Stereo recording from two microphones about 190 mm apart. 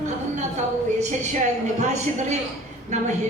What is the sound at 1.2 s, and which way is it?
A woman's voice, 35° right (ahead or behind).